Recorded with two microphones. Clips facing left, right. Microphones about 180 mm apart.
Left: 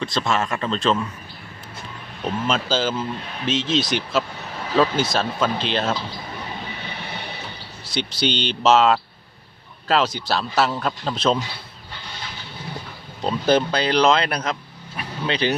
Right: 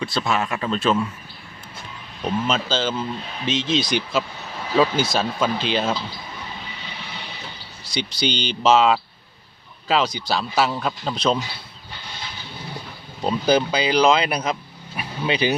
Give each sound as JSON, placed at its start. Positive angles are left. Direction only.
{"t": 0.0, "sound": "speech", "side_deg": -5}
{"t": 2.5, "sound": "speech", "side_deg": 5}
{"t": 6.8, "sound": "train", "side_deg": 60}
{"t": 7.9, "sound": "speech", "side_deg": 0}
{"t": 13.2, "sound": "speech", "side_deg": 0}
{"t": 14.9, "sound": "vehicle", "side_deg": -10}